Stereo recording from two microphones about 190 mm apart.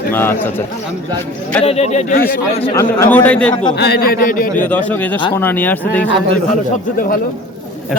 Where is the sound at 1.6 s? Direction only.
35° left (ahead or behind).